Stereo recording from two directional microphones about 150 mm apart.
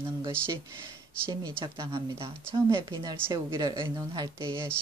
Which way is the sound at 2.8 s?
30° right (ahead or behind).